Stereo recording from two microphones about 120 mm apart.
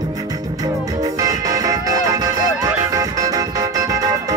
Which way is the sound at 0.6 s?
30° right (ahead or behind).